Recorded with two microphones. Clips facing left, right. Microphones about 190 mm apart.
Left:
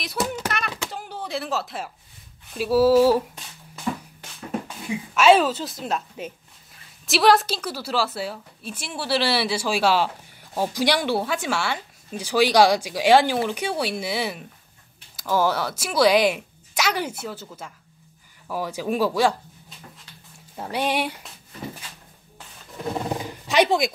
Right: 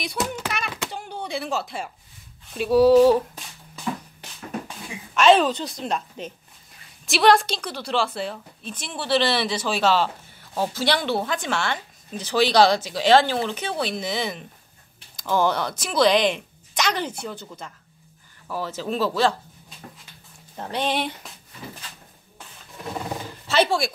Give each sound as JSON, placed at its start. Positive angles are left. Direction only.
{"t": 0.0, "sound": "a woman's voice", "side_deg": 0}
{"t": 0.5, "sound": "a sound", "side_deg": 0}
{"t": 2.5, "sound": "a woman's voice", "side_deg": 5}
{"t": 5.1, "sound": "a woman's voice", "side_deg": 5}
{"t": 20.5, "sound": "a woman's voice", "side_deg": 10}
{"t": 22.9, "sound": "roaring cats", "side_deg": 15}